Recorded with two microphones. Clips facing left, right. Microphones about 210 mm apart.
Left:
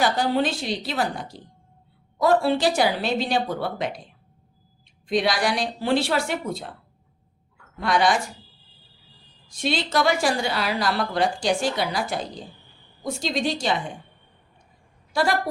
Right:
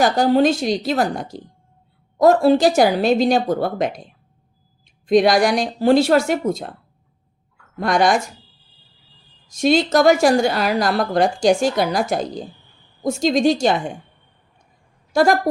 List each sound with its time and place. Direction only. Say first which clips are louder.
0.0 s a woman's voice: right 7 dB; 45° right (ahead or behind)
5.0 s a woman's voice: right 8 dB; 45° right (ahead or behind)
7.8 s a woman's voice: right 4 dB; 45° right (ahead or behind)
9.5 s a woman's voice: right 9 dB; 45° right (ahead or behind)
15.1 s a woman's voice: right 7 dB; 45° right (ahead or behind)